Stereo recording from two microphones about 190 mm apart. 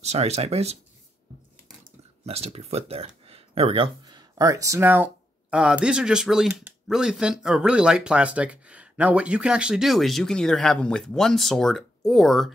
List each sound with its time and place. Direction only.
0.0 s speech: 35° right (ahead or behind)
2.2 s speech: 30° right (ahead or behind); by 12.5 s centre (ahead or behind)